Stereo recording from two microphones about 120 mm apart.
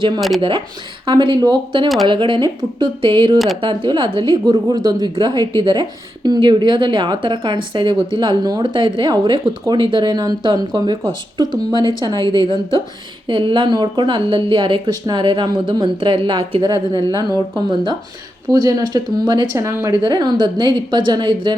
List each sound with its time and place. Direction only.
0.2 s speech: centre (ahead or behind)
1.0 s speech: 40° right (ahead or behind)
3.3 s speech: centre (ahead or behind)
3.6 s speech: 40° right (ahead or behind)
17.2 s speech: 30° right (ahead or behind)
19.5 s speech: 25° right (ahead or behind)
20.1 s speech: 40° right (ahead or behind)